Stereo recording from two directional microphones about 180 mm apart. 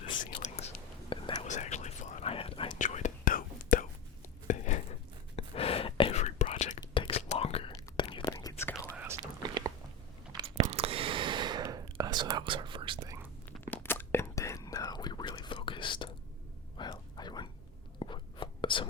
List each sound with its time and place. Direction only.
0.3 s whispering: 40° left (ahead or behind)
1.5 s whispering: 40° left (ahead or behind)
2.7 s whispering: 45° left (ahead or behind)
4.4 s a sound: 40° left (ahead or behind)
5.4 s whispering: 35° left (ahead or behind)
6.7 s whispering: 30° left (ahead or behind)
8.9 s whispering: 10° right (ahead or behind)
9.4 s biting: 25° right (ahead or behind)
10.7 s whispering: 30° right (ahead or behind)
13.7 s whispering: 10° left (ahead or behind); by 16.0 s 25° left (ahead or behind)
16.7 s a sound: 25° left (ahead or behind)
18.0 s whispering: 25° left (ahead or behind)